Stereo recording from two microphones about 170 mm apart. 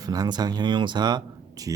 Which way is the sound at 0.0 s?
20° right (ahead or behind).